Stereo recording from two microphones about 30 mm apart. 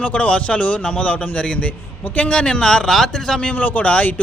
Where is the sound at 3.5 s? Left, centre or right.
Left.